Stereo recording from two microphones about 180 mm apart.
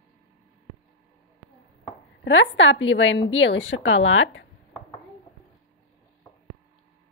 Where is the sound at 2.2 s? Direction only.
90° left.